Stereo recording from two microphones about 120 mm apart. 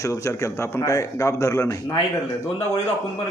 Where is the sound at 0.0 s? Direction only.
25° left (ahead or behind).